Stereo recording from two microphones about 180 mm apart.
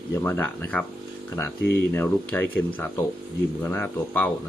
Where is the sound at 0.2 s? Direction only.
10° left (ahead or behind).